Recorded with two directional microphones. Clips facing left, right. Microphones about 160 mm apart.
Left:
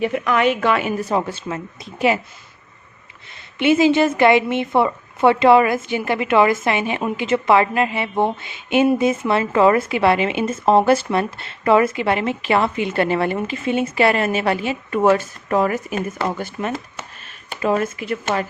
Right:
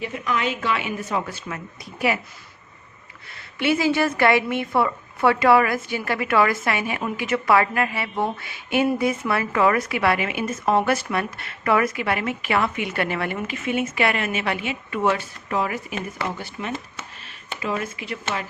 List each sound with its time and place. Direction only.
0.0 s a woman's voice: 65° left (ahead or behind); by 2.1 s 25° left (ahead or behind)
3.3 s speech: 20° left (ahead or behind); by 18.4 s 45° left (ahead or behind)